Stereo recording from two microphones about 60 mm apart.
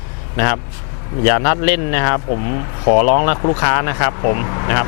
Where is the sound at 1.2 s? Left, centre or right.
Left.